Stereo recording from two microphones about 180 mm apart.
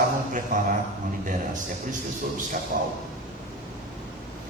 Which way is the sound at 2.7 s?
55° right (ahead or behind).